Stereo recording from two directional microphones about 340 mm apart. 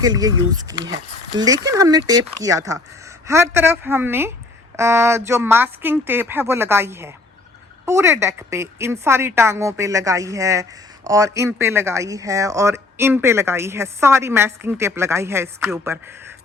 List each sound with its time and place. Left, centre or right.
0.0 s speech: centre